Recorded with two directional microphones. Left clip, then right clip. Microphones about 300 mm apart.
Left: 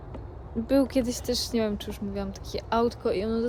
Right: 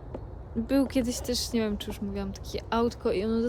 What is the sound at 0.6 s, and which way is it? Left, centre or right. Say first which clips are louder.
Speech: left 3 dB; centre.